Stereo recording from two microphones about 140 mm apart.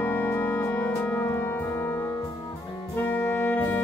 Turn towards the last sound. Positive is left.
turn(degrees=15)  # may be behind; listen again after turning